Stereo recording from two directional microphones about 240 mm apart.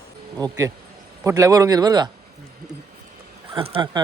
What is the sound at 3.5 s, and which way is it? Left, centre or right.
Speech, right.